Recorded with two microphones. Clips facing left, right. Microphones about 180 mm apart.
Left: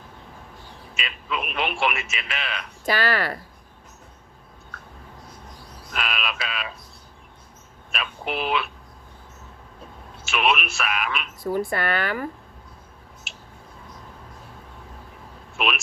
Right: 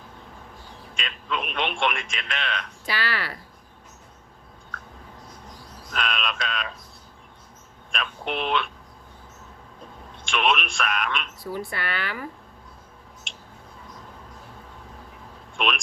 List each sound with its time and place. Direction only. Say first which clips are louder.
0.9 s speech: even; 5° left (ahead or behind)
2.8 s a woman's voice: left 8 dB; 45° left (ahead or behind)
5.9 s speech: right 1 dB; 5° left (ahead or behind)
7.9 s speech: even; 5° left (ahead or behind)
10.2 s speech: left 1 dB; 5° left (ahead or behind)
11.4 s a woman's voice: left 9 dB; 50° left (ahead or behind)
13.3 s a sound: left 1 dB; 5° left (ahead or behind)
15.5 s a man's voice: even; 5° left (ahead or behind)